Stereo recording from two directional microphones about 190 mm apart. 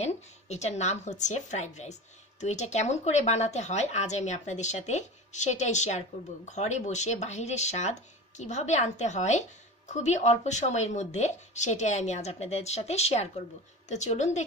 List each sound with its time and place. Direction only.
0.0 s speech: 35° left (ahead or behind)